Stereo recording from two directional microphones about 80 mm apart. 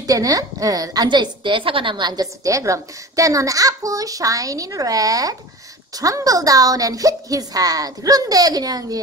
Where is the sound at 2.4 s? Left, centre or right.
Right.